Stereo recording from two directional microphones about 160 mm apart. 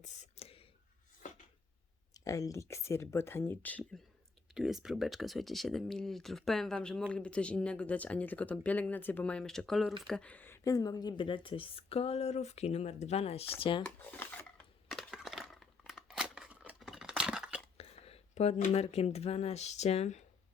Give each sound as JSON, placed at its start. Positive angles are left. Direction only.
{"t": 0.0, "sound": "a sound", "side_deg": 45}
{"t": 2.1, "sound": "speech", "side_deg": 20}
{"t": 4.5, "sound": "a woman's voice", "side_deg": -5}
{"t": 13.8, "sound": "dishes", "side_deg": 10}
{"t": 14.8, "sound": "scissors", "side_deg": 0}
{"t": 17.7, "sound": "speech", "side_deg": 40}